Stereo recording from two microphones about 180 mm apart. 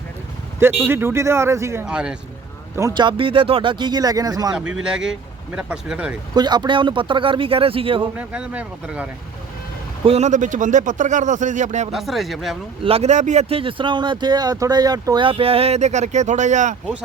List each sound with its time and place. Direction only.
0.6 s speech: 10° right (ahead or behind)
2.7 s speech: 20° right (ahead or behind)
4.5 s speech: 5° right (ahead or behind)
6.3 s speech: 25° right (ahead or behind)
8.1 s speech: 5° right (ahead or behind)
10.1 s speech: 40° right (ahead or behind)
11.9 s speech: centre (ahead or behind)
12.8 s speech: 35° right (ahead or behind)